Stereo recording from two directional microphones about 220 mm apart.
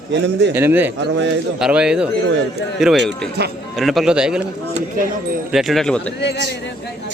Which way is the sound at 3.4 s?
45° right (ahead or behind).